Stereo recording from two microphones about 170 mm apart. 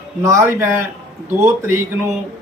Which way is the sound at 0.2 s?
20° right (ahead or behind).